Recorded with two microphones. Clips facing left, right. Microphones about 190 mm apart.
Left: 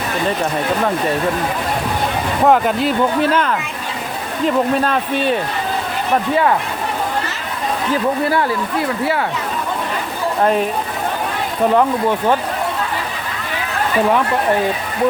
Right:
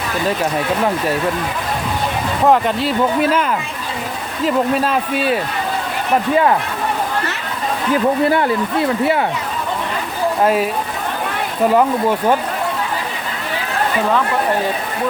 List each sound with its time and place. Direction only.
2.5 s speech: centre (ahead or behind)
3.2 s speech: 10° right (ahead or behind)
8.3 s speech: 20° right (ahead or behind)
10.4 s speech: 5° right (ahead or behind)
11.7 s speech: 10° right (ahead or behind)